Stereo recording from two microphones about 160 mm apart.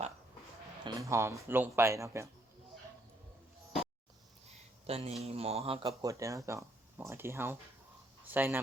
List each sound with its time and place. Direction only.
0.9 s speech: 20° right (ahead or behind)
4.4 s a sound: 40° right (ahead or behind)
5.2 s speech: 40° right (ahead or behind)
6.0 s speech: 20° right (ahead or behind)